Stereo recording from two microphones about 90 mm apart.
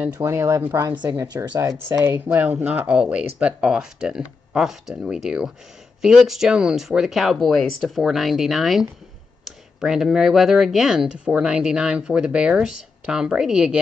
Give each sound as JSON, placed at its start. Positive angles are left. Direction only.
{"t": 0.2, "sound": "speech", "side_deg": -30}
{"t": 0.7, "sound": "speech", "side_deg": -50}
{"t": 2.0, "sound": "speech", "side_deg": -25}